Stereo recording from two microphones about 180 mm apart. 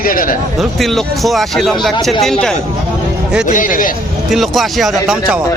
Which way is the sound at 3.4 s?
45° left (ahead or behind).